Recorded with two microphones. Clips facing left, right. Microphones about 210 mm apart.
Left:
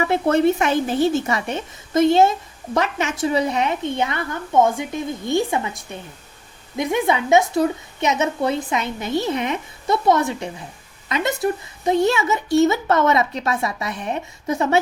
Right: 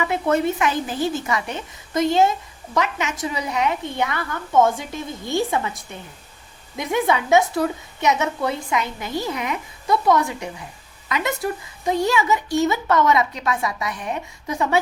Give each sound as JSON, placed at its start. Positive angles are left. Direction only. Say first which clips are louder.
{"t": 0.0, "sound": "a woman's voice", "louder": "left 3 dB", "side_deg": 30}
{"t": 6.7, "sound": "a woman's voice", "louder": "left 1 dB", "side_deg": 20}
{"t": 11.9, "sound": "a woman's voice", "louder": "left 2 dB", "side_deg": 25}